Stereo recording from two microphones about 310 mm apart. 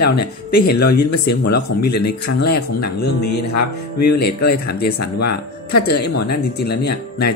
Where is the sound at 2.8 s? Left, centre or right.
Left.